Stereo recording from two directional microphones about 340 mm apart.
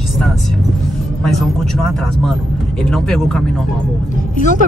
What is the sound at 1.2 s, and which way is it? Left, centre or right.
Speech, centre.